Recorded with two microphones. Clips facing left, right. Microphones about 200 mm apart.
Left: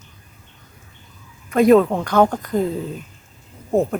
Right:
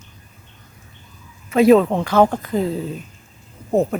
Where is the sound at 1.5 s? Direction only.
5° right (ahead or behind).